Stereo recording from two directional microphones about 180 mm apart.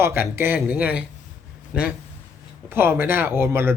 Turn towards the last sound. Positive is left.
turn(degrees=-15)  # may be behind; listen again after turning